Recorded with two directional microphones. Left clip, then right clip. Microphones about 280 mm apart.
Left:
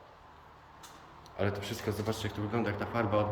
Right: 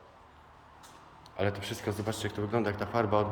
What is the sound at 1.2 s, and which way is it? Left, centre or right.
A man's voice, centre.